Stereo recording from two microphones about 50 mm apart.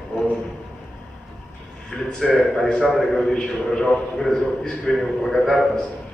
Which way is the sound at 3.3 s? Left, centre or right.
Centre.